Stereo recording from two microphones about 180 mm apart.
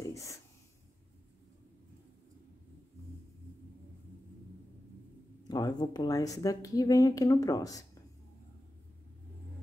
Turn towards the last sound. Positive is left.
turn(degrees=20)  # may be behind; listen again after turning